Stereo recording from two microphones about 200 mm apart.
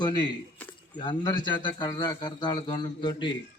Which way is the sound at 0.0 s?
20° left (ahead or behind).